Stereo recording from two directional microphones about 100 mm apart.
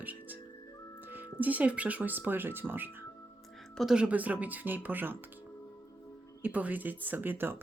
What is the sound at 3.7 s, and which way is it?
Speech, 5° right (ahead or behind).